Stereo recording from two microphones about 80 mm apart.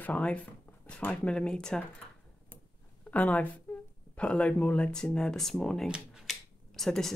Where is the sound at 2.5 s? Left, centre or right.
Centre.